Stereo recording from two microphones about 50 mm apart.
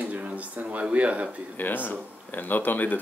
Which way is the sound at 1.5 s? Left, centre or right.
Left.